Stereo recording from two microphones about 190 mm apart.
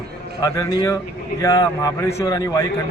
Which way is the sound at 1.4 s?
15° left (ahead or behind).